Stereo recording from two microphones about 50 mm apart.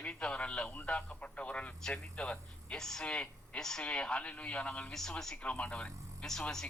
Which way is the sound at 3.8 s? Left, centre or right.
Left.